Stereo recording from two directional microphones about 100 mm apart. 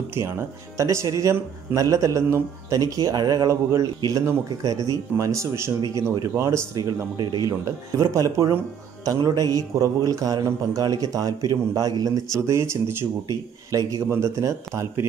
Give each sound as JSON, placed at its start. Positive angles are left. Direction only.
{"t": 0.1, "sound": "a man's voice", "side_deg": -25}